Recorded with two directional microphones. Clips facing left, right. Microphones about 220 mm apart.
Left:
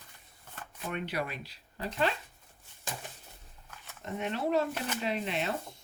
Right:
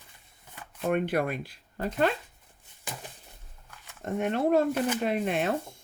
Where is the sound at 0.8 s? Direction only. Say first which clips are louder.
Right 9 dB; 50° right (ahead or behind).